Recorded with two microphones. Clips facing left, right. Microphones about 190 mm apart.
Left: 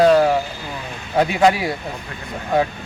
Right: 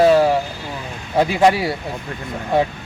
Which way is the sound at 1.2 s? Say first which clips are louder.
Right 1 dB; centre (ahead or behind).